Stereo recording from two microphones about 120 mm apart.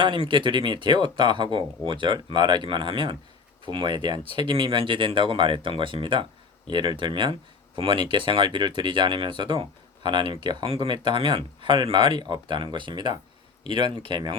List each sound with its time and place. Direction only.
0.3 s speech: 40° right (ahead or behind)